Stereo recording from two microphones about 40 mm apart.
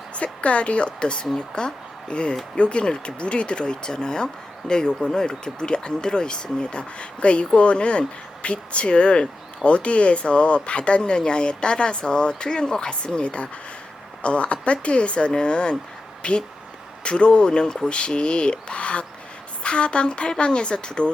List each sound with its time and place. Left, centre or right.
0.2 s speech: left